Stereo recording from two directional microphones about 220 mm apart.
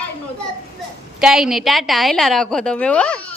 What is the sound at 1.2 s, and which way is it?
A woman's voice, centre (ahead or behind).